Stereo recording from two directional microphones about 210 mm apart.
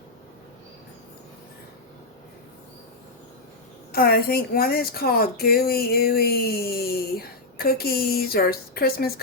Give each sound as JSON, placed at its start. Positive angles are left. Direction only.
{"t": 3.9, "sound": "speech", "side_deg": 45}